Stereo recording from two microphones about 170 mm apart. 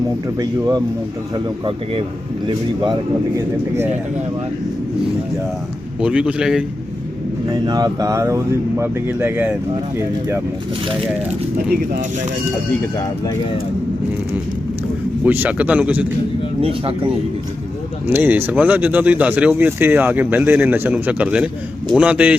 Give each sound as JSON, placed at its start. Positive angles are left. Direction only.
{"t": 1.6, "sound": "speech", "side_deg": -35}
{"t": 6.0, "sound": "speech", "side_deg": -5}
{"t": 7.5, "sound": "speech", "side_deg": -25}
{"t": 15.2, "sound": "speech", "side_deg": -10}
{"t": 16.6, "sound": "speech", "side_deg": -35}
{"t": 18.1, "sound": "speech", "side_deg": -10}